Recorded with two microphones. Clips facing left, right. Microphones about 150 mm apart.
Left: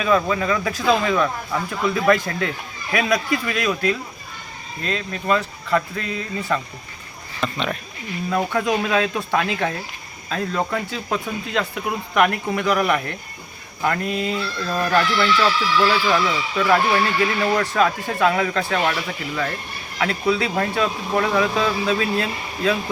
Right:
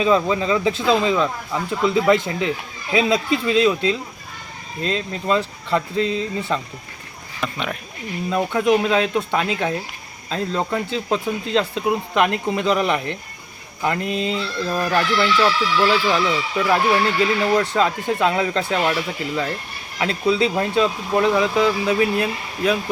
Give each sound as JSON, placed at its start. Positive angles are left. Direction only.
{"t": 0.0, "sound": "speech", "side_deg": -25}
{"t": 7.3, "sound": "speech", "side_deg": -10}
{"t": 20.0, "sound": "speech", "side_deg": -20}